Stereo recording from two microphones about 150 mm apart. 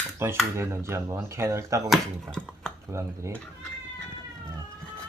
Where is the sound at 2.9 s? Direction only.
20° right (ahead or behind).